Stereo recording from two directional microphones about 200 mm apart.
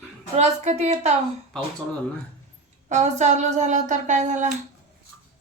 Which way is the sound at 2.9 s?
35° right (ahead or behind).